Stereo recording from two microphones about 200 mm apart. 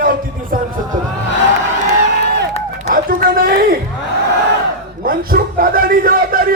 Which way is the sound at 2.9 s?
45° right (ahead or behind).